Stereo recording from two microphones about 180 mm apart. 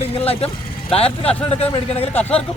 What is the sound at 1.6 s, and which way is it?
Speech, 35° left (ahead or behind).